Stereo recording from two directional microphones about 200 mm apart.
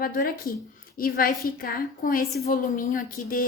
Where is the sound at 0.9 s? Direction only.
45° left (ahead or behind).